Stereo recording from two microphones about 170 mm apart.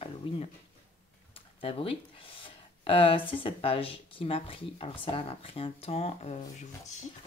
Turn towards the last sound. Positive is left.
turn(degrees=40)  # may be behind; listen again after turning